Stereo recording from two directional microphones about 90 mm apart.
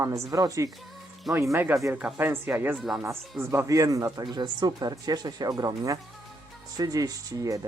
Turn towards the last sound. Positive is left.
turn(degrees=-40)  # may be behind; listen again after turning